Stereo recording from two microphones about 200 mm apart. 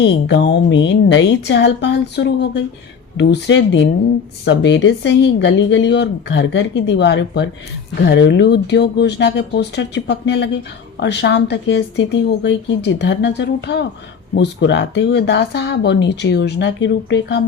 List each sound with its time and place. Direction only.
0.0 s speech: 60° left (ahead or behind)